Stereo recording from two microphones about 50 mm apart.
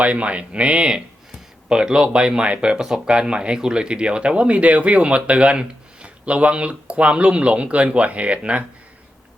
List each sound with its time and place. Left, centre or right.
0.0 s speech: right